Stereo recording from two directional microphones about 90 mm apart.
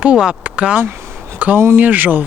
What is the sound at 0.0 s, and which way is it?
Speech, 10° right (ahead or behind).